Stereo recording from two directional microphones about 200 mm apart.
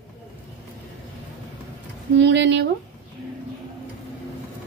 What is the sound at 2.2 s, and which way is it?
Speech, 60° right (ahead or behind).